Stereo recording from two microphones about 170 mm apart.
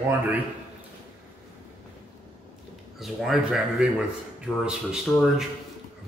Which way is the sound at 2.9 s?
Centre (ahead or behind).